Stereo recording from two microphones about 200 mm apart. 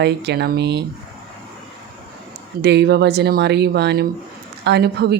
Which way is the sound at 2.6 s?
55° right (ahead or behind).